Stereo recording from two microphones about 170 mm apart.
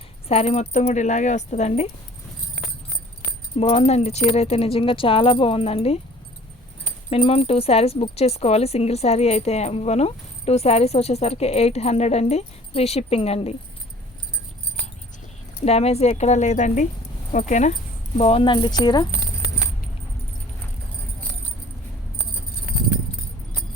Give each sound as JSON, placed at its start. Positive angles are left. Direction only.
{"t": 0.3, "sound": "speech", "side_deg": 40}
{"t": 3.6, "sound": "speech", "side_deg": 35}
{"t": 7.1, "sound": "speech", "side_deg": 35}
{"t": 15.6, "sound": "speech", "side_deg": 40}